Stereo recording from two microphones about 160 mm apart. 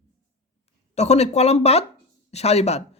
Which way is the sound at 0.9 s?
45° left (ahead or behind).